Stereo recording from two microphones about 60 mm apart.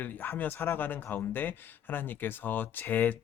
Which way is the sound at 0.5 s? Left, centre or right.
Left.